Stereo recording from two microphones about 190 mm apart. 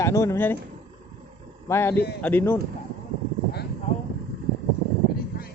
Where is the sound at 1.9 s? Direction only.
60° left (ahead or behind).